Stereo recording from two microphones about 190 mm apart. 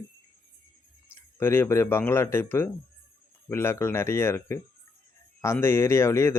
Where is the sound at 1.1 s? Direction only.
10° left (ahead or behind).